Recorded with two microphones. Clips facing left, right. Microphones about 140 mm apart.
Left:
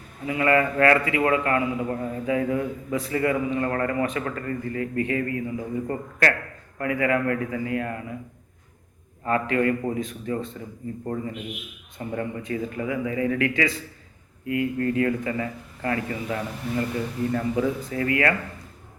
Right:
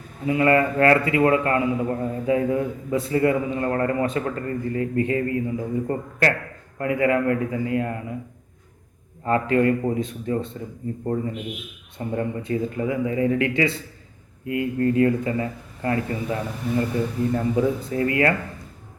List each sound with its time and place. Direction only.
0.3 s a man's voice: 30° right (ahead or behind)
9.2 s a man's voice: 25° right (ahead or behind)
11.9 s a man's voice: 30° right (ahead or behind)